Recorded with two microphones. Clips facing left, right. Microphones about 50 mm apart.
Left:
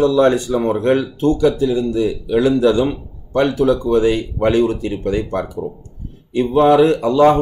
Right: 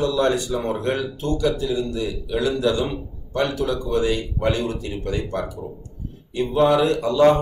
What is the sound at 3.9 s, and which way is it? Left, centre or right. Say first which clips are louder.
Speech: left 6 dB; left.